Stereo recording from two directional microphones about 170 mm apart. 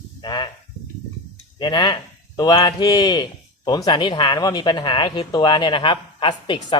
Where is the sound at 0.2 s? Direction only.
25° left (ahead or behind).